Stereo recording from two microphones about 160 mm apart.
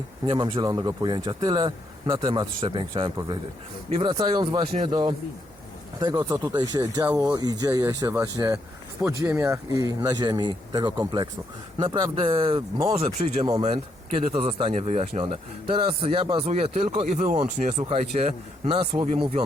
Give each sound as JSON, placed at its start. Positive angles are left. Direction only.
{"t": 0.3, "sound": "a man's voice", "side_deg": -30}
{"t": 8.1, "sound": "a man's voice", "side_deg": -10}